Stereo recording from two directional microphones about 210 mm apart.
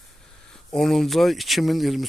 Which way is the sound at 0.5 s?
Centre (ahead or behind).